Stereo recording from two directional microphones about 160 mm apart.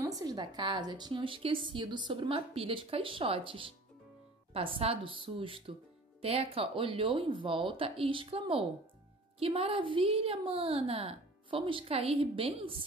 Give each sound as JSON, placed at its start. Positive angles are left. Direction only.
{"t": 0.0, "sound": "a woman's voice", "side_deg": -25}